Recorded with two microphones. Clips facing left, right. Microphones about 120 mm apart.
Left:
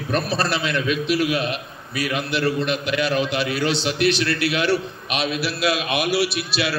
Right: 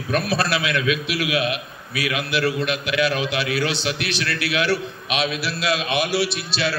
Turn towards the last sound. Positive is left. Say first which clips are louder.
# left 1 dB
turn(degrees=5)  # may be behind; listen again after turning